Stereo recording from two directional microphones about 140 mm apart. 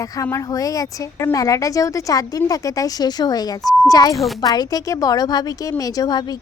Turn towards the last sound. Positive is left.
turn(degrees=30)  # may be behind; listen again after turning